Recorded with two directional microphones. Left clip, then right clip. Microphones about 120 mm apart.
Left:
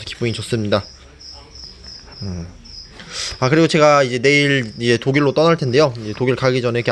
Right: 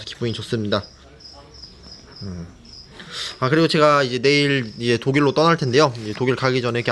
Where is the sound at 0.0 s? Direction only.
10° left (ahead or behind).